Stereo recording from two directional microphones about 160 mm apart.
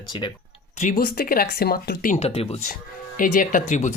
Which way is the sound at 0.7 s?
55° left (ahead or behind).